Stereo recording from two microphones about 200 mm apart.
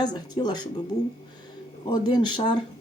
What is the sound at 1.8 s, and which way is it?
Speech, 20° left (ahead or behind).